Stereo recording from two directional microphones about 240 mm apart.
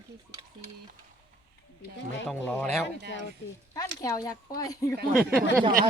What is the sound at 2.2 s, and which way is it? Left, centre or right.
A woman's voice, centre.